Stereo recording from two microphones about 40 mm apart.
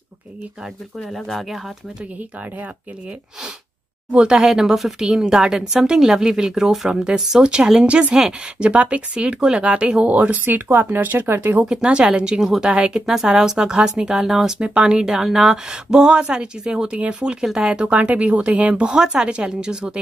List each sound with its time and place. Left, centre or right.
1.1 s speech: centre
4.1 s speech: right
4.4 s speech: centre; by 8.1 s right
8.1 s speech: centre
10.0 s speech: right
10.4 s speech: right
11.2 s speech: right
11.6 s speech: centre
17.8 s speech: right
18.9 s speech: centre